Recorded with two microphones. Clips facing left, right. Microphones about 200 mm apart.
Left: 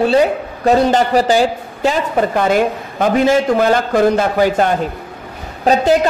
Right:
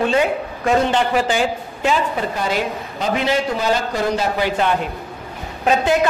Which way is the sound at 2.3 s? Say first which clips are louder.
Left 7 dB; 55° left (ahead or behind).